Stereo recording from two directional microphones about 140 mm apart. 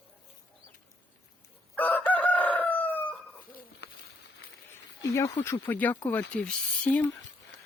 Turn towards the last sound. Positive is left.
turn(degrees=10)  # may be behind; listen again after turning